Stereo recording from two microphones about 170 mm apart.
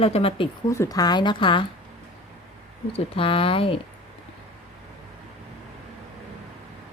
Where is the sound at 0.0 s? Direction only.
35° left (ahead or behind).